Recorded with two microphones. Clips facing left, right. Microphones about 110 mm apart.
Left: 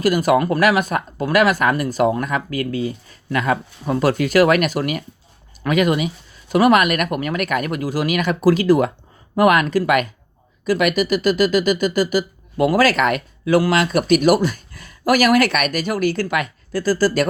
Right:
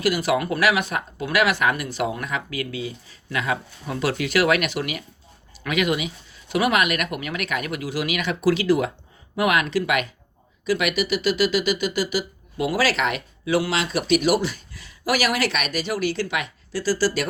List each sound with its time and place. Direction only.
0.0 s speech: 45° left (ahead or behind)